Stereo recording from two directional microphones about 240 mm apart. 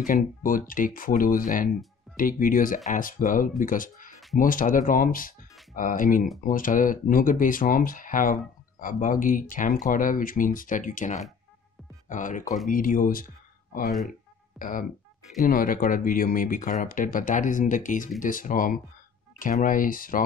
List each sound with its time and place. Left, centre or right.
0.1 s speech: left
14.6 s speech: left